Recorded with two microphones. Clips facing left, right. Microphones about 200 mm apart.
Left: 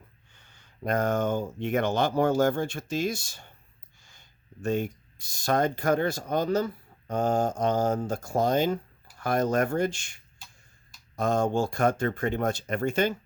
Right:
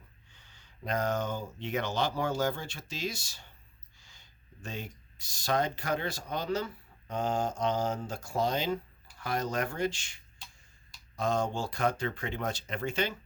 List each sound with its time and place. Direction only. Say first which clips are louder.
0.3 s speech: left 7 dB; 50° left (ahead or behind)